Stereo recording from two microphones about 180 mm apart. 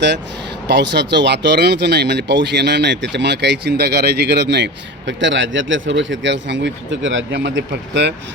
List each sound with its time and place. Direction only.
0.7 s speech: 75° right (ahead or behind)